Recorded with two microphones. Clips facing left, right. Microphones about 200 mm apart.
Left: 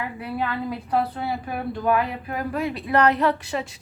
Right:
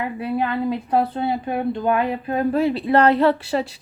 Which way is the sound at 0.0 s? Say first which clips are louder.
Right 5 dB; 25° right (ahead or behind).